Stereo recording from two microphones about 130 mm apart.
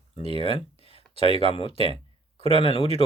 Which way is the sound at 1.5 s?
45° left (ahead or behind).